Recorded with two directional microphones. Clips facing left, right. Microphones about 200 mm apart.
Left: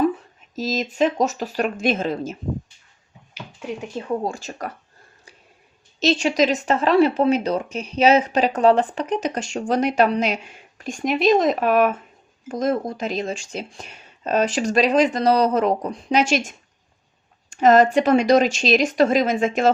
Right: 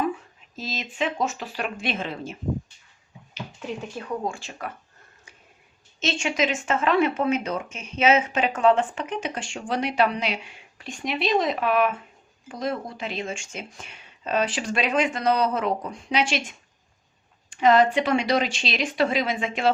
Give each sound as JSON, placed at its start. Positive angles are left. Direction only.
{"t": 0.0, "sound": "speech", "side_deg": 40}
{"t": 3.9, "sound": "speech", "side_deg": 30}
{"t": 6.0, "sound": "speech", "side_deg": 35}